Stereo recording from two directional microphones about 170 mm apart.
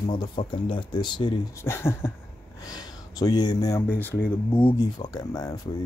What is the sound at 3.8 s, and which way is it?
Speech, 10° left (ahead or behind).